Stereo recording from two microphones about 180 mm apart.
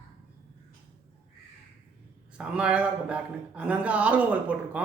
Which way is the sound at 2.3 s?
5° right (ahead or behind).